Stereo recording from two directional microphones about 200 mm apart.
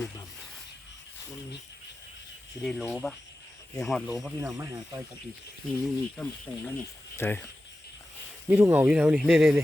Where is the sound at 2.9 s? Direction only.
5° left (ahead or behind).